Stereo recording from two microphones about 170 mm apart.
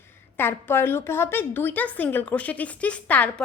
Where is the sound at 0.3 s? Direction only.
10° left (ahead or behind).